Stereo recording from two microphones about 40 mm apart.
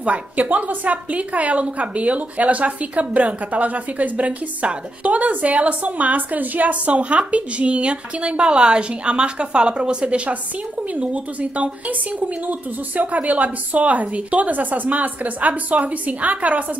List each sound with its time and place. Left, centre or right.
0.0 s a woman's voice: right